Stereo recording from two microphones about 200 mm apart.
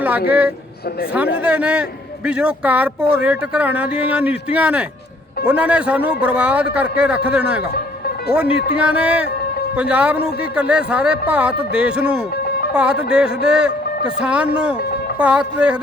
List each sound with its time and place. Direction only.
0.3 s a man's voice: 5° right (ahead or behind)
8.7 s a man's voice: 5° right (ahead or behind)
12.5 s music: 50° left (ahead or behind)
12.7 s a man's voice: 5° right (ahead or behind)